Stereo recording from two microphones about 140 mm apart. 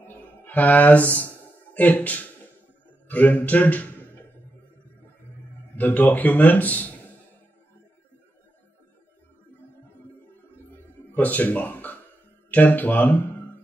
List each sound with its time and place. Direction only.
0.0 s a sound: 15° left (ahead or behind)
3.1 s a man's voice: 10° left (ahead or behind)
5.8 s speech: 10° left (ahead or behind)
9.5 s music: 15° left (ahead or behind)
11.1 s speech: 10° left (ahead or behind)